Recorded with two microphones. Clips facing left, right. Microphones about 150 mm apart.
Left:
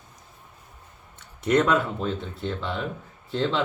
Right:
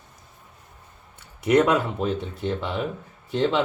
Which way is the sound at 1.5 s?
10° right (ahead or behind).